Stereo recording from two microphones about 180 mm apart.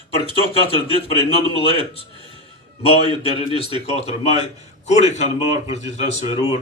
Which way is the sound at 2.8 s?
35° left (ahead or behind).